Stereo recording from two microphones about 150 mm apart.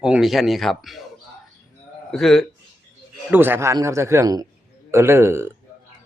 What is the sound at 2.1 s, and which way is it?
Speech, 5° left (ahead or behind).